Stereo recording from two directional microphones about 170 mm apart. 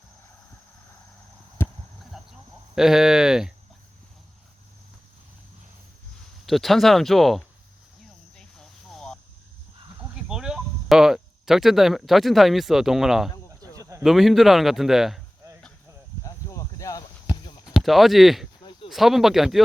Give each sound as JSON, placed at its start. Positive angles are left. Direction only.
{"t": 1.6, "sound": "a sound", "side_deg": 15}
{"t": 2.1, "sound": "cricket", "side_deg": 0}
{"t": 2.7, "sound": "a man's voice", "side_deg": 0}
{"t": 6.4, "sound": "a man's voice", "side_deg": 0}
{"t": 8.4, "sound": "a sound", "side_deg": 5}
{"t": 10.2, "sound": "speech", "side_deg": -5}
{"t": 13.5, "sound": "a sound", "side_deg": -20}
{"t": 14.0, "sound": "a man's voice", "side_deg": 0}
{"t": 16.2, "sound": "cricket", "side_deg": 20}
{"t": 17.3, "sound": "clip-clop", "side_deg": 25}
{"t": 17.7, "sound": "a man's voice", "side_deg": 0}
{"t": 18.6, "sound": "a sound", "side_deg": 25}
{"t": 18.9, "sound": "a man's voice", "side_deg": 0}